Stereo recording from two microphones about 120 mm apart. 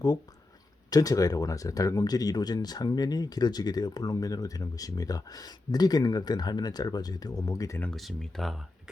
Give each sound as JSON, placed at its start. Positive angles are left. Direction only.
{"t": 0.9, "sound": "speech", "side_deg": 30}
{"t": 7.8, "sound": "speech", "side_deg": 5}